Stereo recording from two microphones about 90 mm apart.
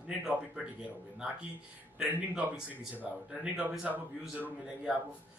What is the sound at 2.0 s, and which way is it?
Speech, 10° right (ahead or behind).